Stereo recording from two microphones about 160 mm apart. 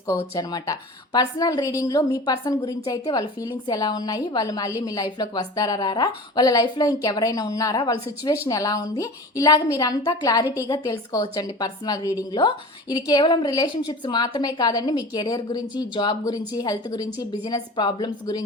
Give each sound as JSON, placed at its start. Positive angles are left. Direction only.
{"t": 0.1, "sound": "a woman's voice", "side_deg": 20}